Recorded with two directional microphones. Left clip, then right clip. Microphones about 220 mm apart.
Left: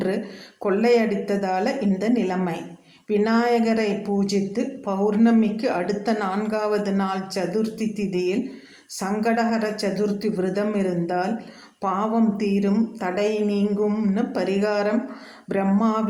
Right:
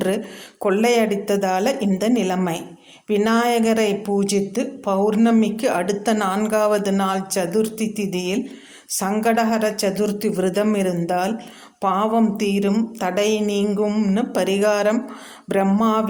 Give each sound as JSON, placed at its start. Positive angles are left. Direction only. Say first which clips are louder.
{"t": 0.6, "sound": "a woman's voice", "louder": "right 2 dB", "side_deg": -40}